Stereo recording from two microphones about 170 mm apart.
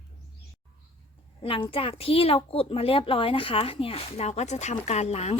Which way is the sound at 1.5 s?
30° left (ahead or behind).